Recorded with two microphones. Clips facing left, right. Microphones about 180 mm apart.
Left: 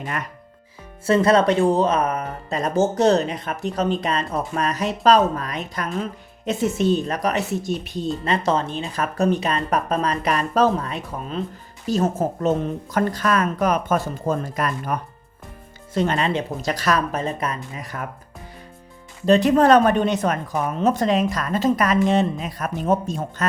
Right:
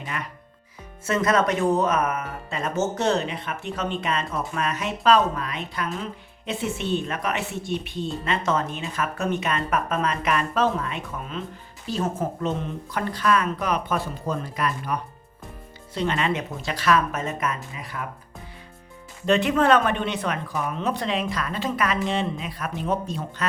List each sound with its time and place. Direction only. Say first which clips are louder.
0.0 s speech: left 4 dB; 45° left (ahead or behind)
1.0 s a woman's voice: left 5 dB; 30° left (ahead or behind)
19.2 s speech: left 5 dB; 35° left (ahead or behind)